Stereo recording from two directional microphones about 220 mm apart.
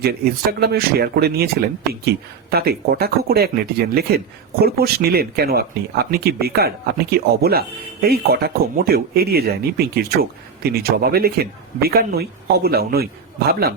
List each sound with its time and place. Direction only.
0.6 s speech: 45° right (ahead or behind)